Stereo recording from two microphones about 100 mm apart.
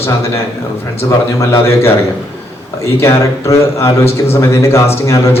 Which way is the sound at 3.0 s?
30° left (ahead or behind).